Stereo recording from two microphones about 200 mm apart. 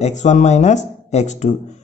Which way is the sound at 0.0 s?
35° left (ahead or behind).